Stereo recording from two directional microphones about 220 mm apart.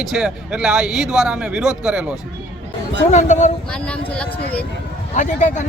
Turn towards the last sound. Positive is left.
turn(degrees=35)  # may be behind; listen again after turning